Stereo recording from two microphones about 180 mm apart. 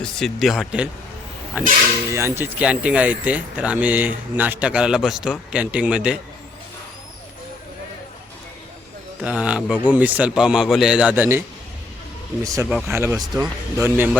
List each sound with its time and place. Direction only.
0.0 s speech: centre (ahead or behind)
9.2 s speech: 5° right (ahead or behind)